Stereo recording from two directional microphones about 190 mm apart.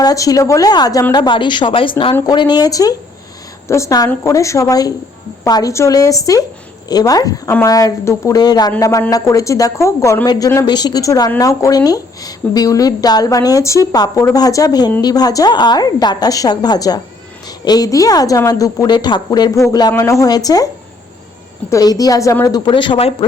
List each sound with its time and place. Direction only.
0.0 s a woman's voice: 20° left (ahead or behind)
21.7 s a woman's voice: 20° left (ahead or behind)